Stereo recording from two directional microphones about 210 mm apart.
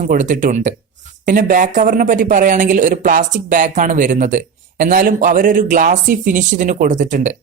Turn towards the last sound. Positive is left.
turn(degrees=-35)  # may be behind; listen again after turning